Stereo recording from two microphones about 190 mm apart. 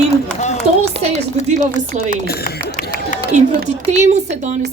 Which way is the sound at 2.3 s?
55° left (ahead or behind).